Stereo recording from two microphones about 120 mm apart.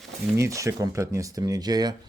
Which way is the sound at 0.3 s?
25° right (ahead or behind).